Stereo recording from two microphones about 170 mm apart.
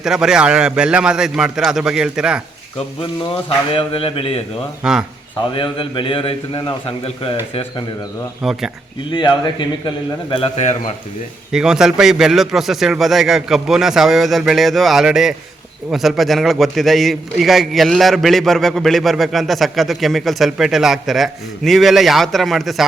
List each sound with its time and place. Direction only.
0.0 s a man's voice: 5° right (ahead or behind)
3.7 s a man's voice: 30° left (ahead or behind)
4.8 s a man's voice: 5° right (ahead or behind)
5.5 s a man's voice: 30° left (ahead or behind)
8.4 s a man's voice: 5° right (ahead or behind)
9.0 s a man's voice: 25° left (ahead or behind)
11.5 s a man's voice: 5° right (ahead or behind)